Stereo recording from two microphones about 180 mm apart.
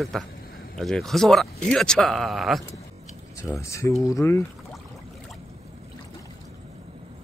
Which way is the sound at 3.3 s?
15° left (ahead or behind).